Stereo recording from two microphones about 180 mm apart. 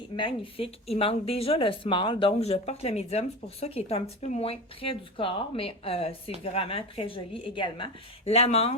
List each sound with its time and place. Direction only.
0.2 s speech: 30° left (ahead or behind)